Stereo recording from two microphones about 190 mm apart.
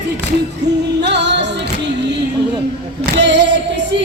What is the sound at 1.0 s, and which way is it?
Music, 65° right (ahead or behind).